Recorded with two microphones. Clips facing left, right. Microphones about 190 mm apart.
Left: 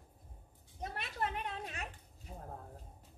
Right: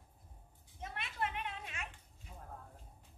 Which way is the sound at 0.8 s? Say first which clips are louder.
Left 2 dB; 40° left (ahead or behind).